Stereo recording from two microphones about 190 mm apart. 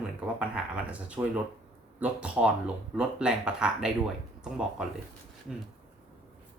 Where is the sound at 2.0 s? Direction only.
5° right (ahead or behind).